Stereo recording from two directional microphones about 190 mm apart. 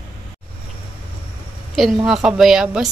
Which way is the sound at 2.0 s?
Centre (ahead or behind).